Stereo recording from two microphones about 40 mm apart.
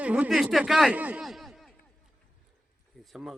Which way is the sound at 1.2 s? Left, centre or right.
Centre.